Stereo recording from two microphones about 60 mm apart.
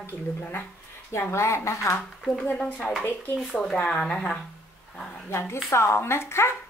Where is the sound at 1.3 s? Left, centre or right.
Left.